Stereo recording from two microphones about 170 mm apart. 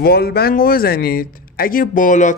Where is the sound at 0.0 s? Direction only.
65° left (ahead or behind).